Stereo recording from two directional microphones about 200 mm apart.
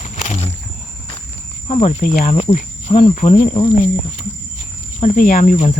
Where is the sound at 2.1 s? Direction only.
40° left (ahead or behind).